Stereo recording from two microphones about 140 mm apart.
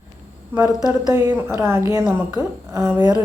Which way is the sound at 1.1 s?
10° right (ahead or behind).